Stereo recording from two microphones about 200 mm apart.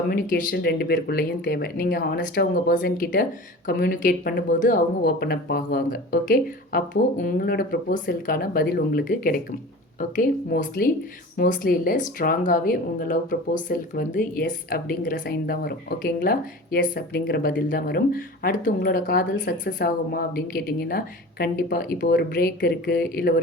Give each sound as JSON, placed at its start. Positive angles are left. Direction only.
{"t": 0.1, "sound": "a woman's voice", "side_deg": 45}